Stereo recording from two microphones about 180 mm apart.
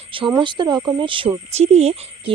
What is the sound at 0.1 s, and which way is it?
Speech, 25° right (ahead or behind).